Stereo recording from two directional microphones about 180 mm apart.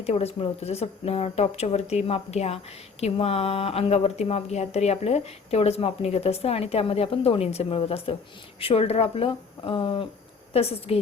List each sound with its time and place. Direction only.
0.0 s speech: 35° left (ahead or behind)